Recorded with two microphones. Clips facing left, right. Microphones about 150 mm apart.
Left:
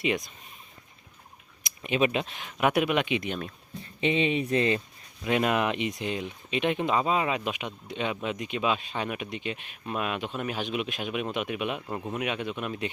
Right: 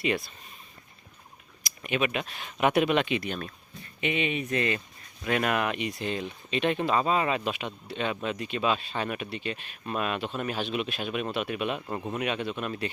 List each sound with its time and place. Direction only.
0.0 s speech: 15° left (ahead or behind)
1.6 s speech: 25° left (ahead or behind)
2.4 s speech: 10° left (ahead or behind)